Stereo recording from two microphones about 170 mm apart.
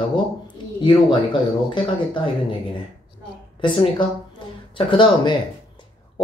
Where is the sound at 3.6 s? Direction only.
30° left (ahead or behind).